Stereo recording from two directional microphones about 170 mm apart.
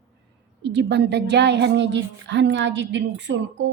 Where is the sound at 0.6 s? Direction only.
90° right.